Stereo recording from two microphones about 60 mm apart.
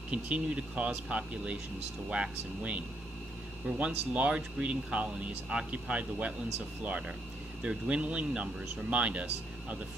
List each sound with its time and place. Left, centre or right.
0.1 s speech: centre